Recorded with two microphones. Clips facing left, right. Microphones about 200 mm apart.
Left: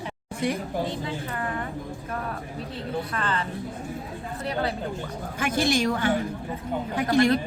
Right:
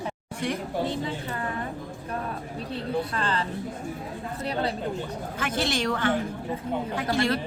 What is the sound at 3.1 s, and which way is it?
Speech, 30° right (ahead or behind).